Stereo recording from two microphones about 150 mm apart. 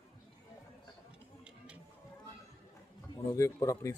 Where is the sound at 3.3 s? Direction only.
20° left (ahead or behind).